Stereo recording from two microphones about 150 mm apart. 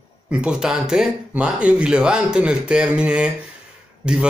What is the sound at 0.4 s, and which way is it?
Speech, 5° right (ahead or behind).